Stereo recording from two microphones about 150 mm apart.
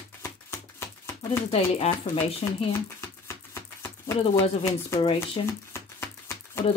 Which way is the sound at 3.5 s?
15° left (ahead or behind).